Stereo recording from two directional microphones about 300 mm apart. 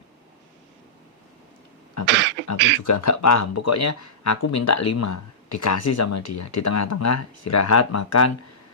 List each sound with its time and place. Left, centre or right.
2.0 s cough: right
2.8 s speech: left